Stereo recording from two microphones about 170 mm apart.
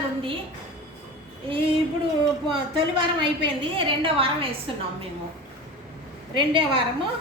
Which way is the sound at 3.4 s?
30° right (ahead or behind).